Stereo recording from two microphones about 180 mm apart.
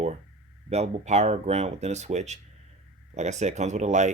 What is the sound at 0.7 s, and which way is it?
Speech, 40° right (ahead or behind).